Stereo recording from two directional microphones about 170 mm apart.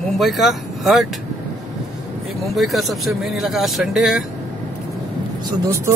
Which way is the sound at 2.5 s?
Centre (ahead or behind).